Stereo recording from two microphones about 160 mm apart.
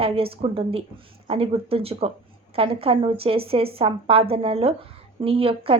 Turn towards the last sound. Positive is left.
turn(degrees=-35)  # may be behind; listen again after turning